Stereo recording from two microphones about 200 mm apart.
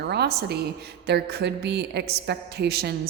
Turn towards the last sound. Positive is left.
turn(degrees=-50)  # may be behind; listen again after turning